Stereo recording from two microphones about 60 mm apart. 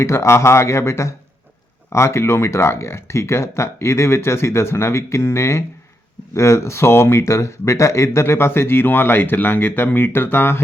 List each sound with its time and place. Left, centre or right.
0.0 s speech: left